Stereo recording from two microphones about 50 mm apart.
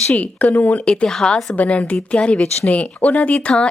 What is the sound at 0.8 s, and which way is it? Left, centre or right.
A woman's voice, centre.